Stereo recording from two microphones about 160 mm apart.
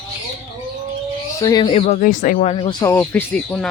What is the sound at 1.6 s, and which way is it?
Speech, 45° left (ahead or behind).